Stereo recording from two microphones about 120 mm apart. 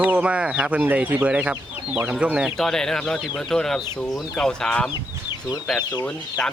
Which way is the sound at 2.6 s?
5° left (ahead or behind).